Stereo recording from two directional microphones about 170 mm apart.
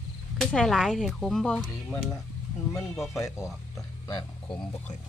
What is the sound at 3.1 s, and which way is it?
Speech, 15° left (ahead or behind).